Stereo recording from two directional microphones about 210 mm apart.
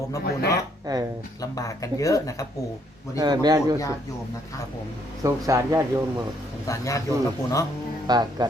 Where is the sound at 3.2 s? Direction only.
20° right (ahead or behind).